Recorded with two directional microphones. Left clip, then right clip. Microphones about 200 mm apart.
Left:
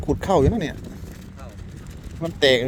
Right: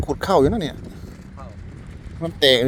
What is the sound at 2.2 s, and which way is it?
Speech, 15° right (ahead or behind).